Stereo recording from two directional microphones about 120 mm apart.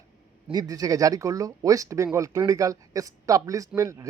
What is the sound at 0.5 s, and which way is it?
Speech, 30° right (ahead or behind).